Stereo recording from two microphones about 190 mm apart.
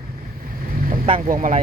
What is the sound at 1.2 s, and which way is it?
Speech, 45° right (ahead or behind).